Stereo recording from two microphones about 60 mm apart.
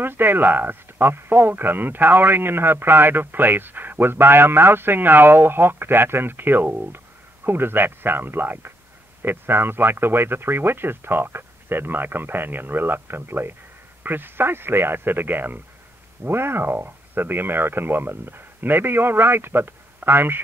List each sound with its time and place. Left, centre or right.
0.0 s speech: right